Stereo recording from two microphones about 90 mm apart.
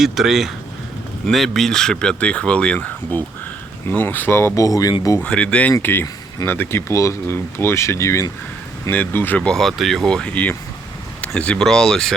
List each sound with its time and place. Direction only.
0.0 s speech: 5° right (ahead or behind); by 4.9 s 40° left (ahead or behind)
5.2 s speech: 15° left (ahead or behind); by 8.3 s 35° left (ahead or behind)
8.9 s speech: 20° left (ahead or behind)
9.4 s speech: 5° left (ahead or behind)